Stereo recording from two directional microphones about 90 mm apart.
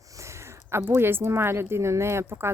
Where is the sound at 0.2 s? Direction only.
30° right (ahead or behind).